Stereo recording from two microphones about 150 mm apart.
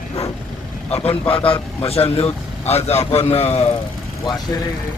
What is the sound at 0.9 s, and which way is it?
A man's voice, 40° left (ahead or behind).